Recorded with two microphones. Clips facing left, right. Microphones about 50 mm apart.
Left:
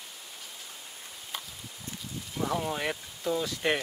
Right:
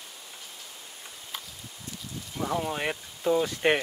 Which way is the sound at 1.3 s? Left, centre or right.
Centre.